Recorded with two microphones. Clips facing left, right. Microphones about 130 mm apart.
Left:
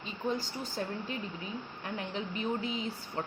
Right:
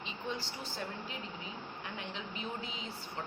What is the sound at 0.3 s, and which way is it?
Speech, 45° left (ahead or behind).